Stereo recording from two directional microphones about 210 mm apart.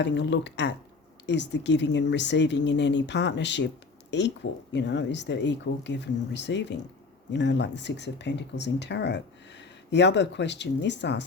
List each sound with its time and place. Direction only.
0.0 s speech: 55° left (ahead or behind)